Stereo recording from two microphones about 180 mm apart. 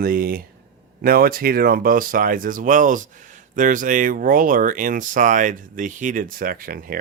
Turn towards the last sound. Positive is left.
turn(degrees=-50)  # may be behind; listen again after turning